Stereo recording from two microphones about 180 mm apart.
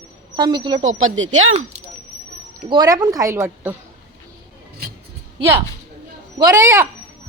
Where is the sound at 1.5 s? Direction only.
40° right (ahead or behind).